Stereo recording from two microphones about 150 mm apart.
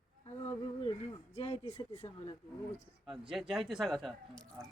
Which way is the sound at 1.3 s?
45° left (ahead or behind).